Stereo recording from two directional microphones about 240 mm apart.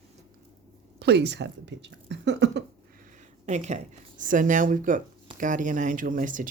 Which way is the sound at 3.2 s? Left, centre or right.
Right.